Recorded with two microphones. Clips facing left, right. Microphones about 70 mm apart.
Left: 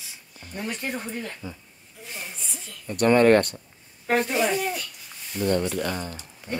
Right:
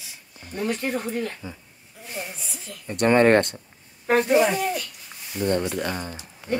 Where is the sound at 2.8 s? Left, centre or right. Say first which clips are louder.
Even; right.